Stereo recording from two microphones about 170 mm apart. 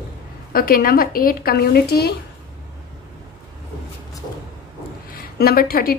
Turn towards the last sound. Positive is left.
turn(degrees=60)  # may be behind; listen again after turning